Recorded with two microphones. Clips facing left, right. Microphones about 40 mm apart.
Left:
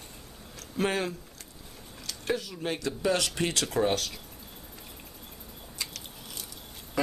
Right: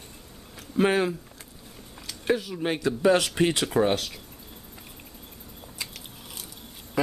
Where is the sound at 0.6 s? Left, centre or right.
Centre.